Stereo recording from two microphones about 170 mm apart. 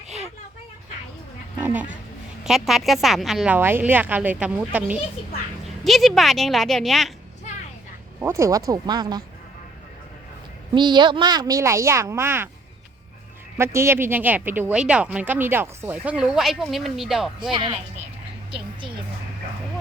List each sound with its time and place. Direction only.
1.5 s speech: 10° right (ahead or behind)
8.2 s speech: 15° right (ahead or behind)
10.8 s speech: 25° right (ahead or behind)
13.6 s speech: 15° right (ahead or behind)
17.5 s speech: 30° right (ahead or behind)